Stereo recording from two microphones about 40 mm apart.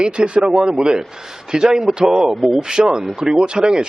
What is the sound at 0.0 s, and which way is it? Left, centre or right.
A man's voice, right.